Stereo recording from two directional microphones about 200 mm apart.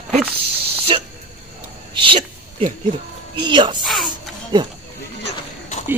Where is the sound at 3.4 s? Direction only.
25° right (ahead or behind).